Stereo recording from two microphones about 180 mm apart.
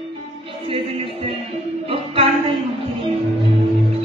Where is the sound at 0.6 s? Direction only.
30° right (ahead or behind).